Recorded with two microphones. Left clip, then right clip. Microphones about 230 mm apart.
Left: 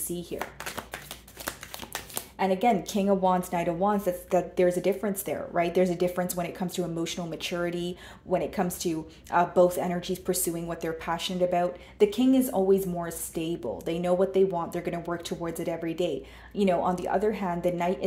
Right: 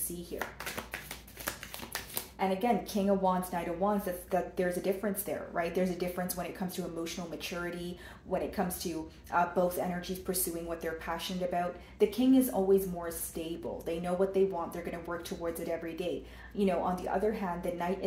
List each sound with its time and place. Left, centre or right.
2.3 s speech: left